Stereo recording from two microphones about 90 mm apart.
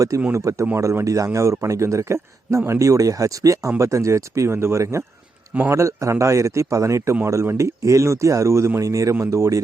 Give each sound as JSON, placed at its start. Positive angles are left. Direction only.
{"t": 0.3, "sound": "speech", "side_deg": -35}